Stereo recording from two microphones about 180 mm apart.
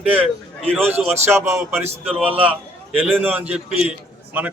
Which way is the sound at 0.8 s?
10° right (ahead or behind).